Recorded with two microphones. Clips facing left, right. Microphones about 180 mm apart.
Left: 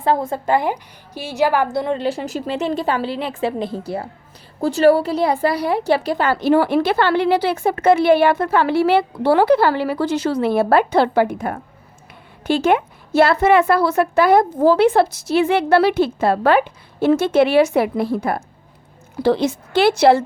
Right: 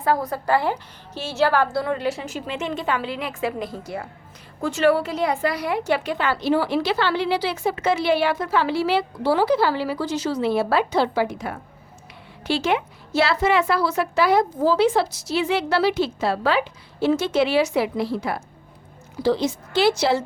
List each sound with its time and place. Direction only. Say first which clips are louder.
0.0 s a woman's voice: left 3 dB; 25° left (ahead or behind); by 20.2 s 60° left (ahead or behind)